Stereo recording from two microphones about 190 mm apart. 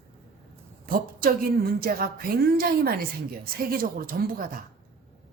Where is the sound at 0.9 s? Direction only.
50° right (ahead or behind).